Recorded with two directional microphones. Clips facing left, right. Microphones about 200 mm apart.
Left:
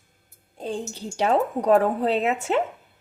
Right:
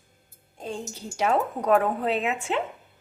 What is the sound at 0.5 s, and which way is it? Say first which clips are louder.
A woman's voice: left 4 dB; 35° left (ahead or behind).